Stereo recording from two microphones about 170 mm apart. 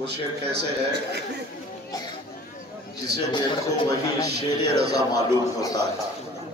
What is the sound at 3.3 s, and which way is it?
A man's voice, 25° left (ahead or behind).